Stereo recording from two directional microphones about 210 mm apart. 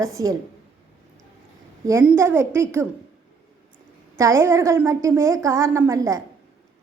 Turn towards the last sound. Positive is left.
turn(degrees=-15)  # may be behind; listen again after turning